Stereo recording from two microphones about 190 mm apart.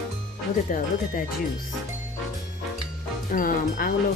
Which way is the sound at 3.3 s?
45° left (ahead or behind).